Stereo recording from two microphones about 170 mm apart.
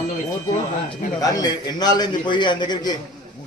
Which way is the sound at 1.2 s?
20° left (ahead or behind).